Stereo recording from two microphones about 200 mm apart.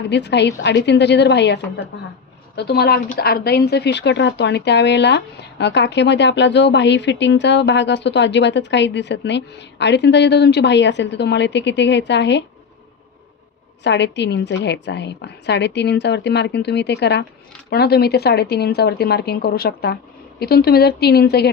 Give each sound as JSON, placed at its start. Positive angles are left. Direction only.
{"t": 0.1, "sound": "speech", "side_deg": 60}
{"t": 13.8, "sound": "speech", "side_deg": 60}